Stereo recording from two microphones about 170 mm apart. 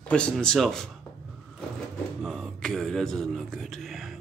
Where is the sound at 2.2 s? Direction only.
Centre (ahead or behind).